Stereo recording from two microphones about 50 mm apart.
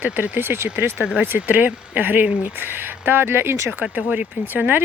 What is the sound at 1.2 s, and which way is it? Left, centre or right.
Speech, right.